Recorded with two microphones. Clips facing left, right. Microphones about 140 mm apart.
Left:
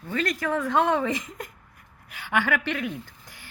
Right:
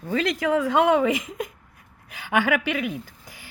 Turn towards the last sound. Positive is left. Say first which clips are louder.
# right 3 dB
turn(degrees=-10)  # may be behind; listen again after turning